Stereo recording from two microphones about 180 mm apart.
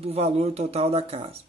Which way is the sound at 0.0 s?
35° right (ahead or behind).